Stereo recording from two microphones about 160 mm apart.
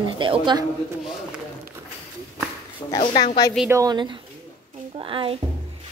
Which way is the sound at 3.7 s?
25° right (ahead or behind).